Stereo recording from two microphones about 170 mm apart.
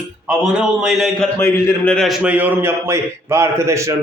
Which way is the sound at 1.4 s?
15° left (ahead or behind).